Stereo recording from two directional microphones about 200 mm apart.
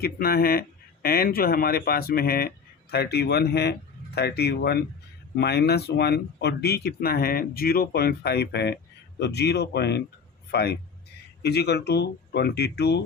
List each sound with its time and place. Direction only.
0.0 s speech: 50° left (ahead or behind)